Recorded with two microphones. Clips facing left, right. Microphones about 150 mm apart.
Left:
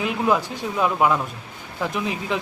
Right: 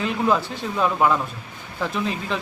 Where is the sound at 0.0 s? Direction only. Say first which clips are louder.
Even; 10° left (ahead or behind).